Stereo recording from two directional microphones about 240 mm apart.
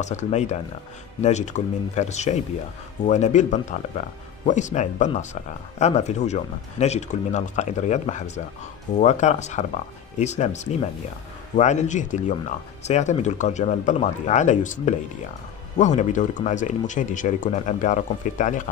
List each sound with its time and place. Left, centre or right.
0.0 s speech: left